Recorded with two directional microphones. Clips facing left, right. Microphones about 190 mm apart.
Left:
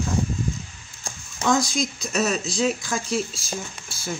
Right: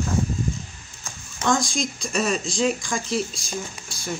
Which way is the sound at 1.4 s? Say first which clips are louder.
Left 1 dB; 5° left (ahead or behind).